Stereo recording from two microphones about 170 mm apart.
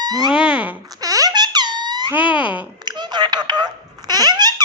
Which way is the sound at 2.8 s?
25° right (ahead or behind).